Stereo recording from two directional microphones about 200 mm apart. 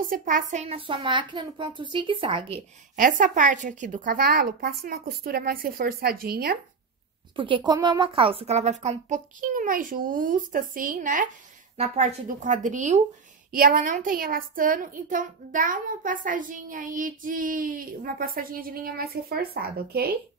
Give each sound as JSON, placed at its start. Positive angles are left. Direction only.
{"t": 0.1, "sound": "speech", "side_deg": -40}
{"t": 3.0, "sound": "a woman's voice", "side_deg": -40}
{"t": 7.3, "sound": "a woman's voice", "side_deg": -25}